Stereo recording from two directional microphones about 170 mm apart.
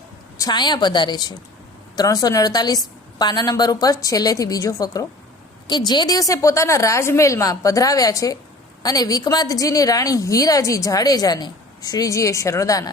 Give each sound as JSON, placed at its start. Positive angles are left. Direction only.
{"t": 0.3, "sound": "a woman's voice", "side_deg": 25}